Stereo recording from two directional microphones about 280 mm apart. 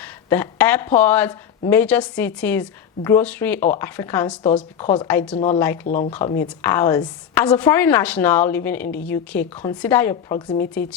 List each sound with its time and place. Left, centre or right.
0.0 s speech: centre
5.8 s speech: left
6.1 s speech: centre